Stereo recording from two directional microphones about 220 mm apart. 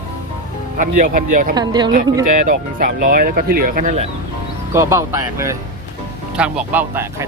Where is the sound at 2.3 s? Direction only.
40° right (ahead or behind).